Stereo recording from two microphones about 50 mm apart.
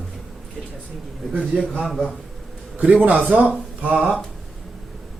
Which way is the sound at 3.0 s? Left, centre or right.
Right.